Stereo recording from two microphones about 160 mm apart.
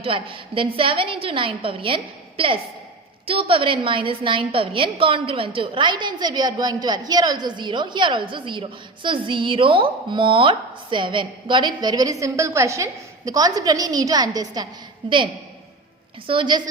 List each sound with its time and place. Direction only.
0.0 s a woman's voice: 35° right (ahead or behind)
16.2 s a woman's voice: 30° right (ahead or behind)